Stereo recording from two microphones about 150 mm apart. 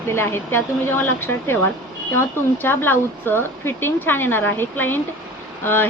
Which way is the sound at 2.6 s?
15° left (ahead or behind).